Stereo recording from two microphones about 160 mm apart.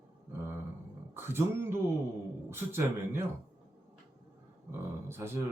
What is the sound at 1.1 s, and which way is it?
Speech, 15° right (ahead or behind).